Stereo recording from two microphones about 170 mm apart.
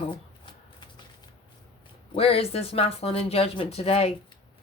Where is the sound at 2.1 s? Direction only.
35° left (ahead or behind).